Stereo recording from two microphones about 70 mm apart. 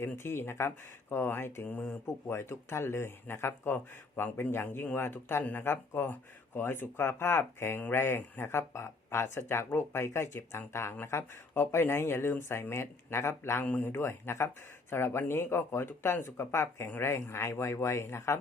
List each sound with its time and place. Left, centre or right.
0.2 s speech: left
2.3 s speech: left
13.7 s speech: left